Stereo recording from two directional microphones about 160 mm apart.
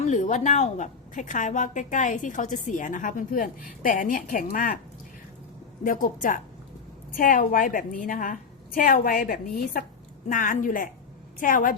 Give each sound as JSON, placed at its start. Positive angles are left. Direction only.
{"t": 0.0, "sound": "a woman's voice", "side_deg": 50}
{"t": 5.8, "sound": "a woman's voice", "side_deg": 55}